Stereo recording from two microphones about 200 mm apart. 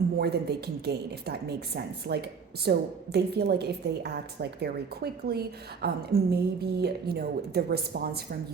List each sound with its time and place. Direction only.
0.2 s a woman's voice: 55° right (ahead or behind)